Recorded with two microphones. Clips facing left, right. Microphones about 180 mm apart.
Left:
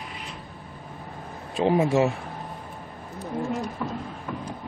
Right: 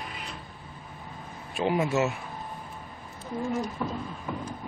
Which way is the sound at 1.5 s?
30° left (ahead or behind).